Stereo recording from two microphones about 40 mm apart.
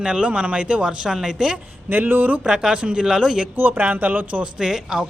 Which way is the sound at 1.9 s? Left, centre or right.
Right.